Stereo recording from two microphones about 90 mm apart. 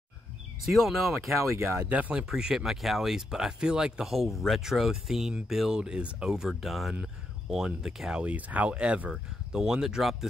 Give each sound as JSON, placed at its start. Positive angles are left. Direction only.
{"t": 0.7, "sound": "speech", "side_deg": 0}
{"t": 1.4, "sound": "speech", "side_deg": -30}
{"t": 1.9, "sound": "speech", "side_deg": -15}
{"t": 2.2, "sound": "speech", "side_deg": -5}